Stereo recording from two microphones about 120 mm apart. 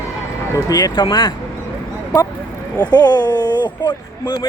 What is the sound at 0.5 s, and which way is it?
Speech, 30° left (ahead or behind).